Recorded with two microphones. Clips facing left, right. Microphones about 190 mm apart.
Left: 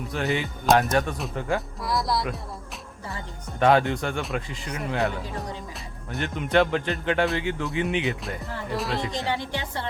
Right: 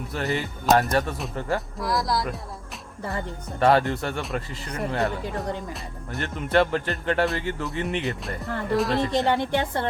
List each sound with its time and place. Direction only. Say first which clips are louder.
0.1 s speech: left 1 dB; centre (ahead or behind)
3.6 s speech: even; centre (ahead or behind)
9.1 s a woman's voice: right 6 dB; 60° right (ahead or behind)